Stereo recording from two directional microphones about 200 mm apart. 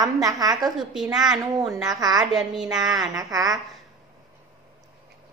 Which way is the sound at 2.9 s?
20° right (ahead or behind).